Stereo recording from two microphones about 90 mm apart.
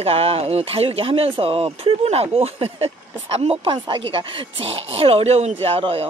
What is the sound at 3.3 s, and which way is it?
Speech, 80° right.